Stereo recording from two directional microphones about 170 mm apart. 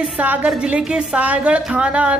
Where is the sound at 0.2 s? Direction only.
10° right (ahead or behind).